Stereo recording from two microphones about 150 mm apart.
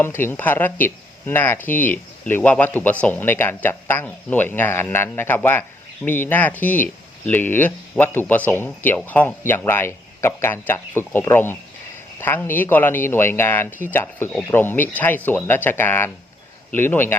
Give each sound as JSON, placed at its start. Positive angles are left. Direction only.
{"t": 0.0, "sound": "speech", "side_deg": 15}